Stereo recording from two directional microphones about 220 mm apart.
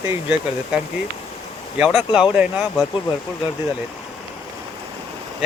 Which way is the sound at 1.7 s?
5° right (ahead or behind).